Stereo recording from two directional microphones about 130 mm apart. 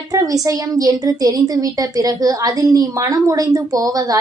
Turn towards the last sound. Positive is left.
turn(degrees=-30)  # may be behind; listen again after turning